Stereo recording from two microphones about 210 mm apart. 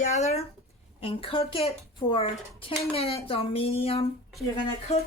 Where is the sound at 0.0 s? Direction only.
30° left (ahead or behind).